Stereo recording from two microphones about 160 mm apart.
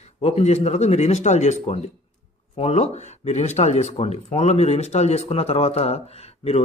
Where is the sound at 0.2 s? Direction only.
45° left (ahead or behind).